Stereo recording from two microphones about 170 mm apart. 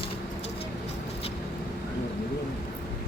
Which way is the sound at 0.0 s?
35° left (ahead or behind).